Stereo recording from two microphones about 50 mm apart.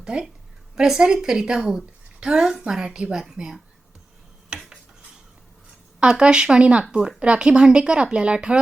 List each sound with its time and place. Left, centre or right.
0.0 s a woman's voice: centre
4.4 s cutlery: centre
6.0 s speech: centre